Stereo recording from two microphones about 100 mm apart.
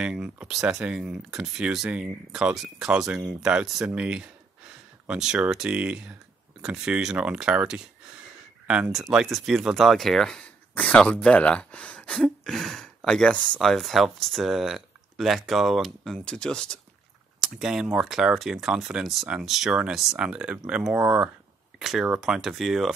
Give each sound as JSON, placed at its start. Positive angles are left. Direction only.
{"t": 0.0, "sound": "speech", "side_deg": -5}
{"t": 8.9, "sound": "speech", "side_deg": -5}
{"t": 17.6, "sound": "speech", "side_deg": -5}